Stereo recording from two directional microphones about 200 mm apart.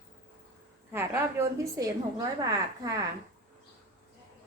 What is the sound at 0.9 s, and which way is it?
A woman's voice, 10° right (ahead or behind).